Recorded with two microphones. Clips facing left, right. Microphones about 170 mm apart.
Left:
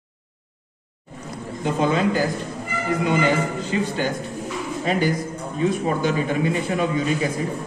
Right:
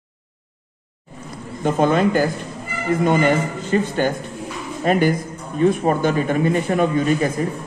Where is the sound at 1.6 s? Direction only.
55° right (ahead or behind).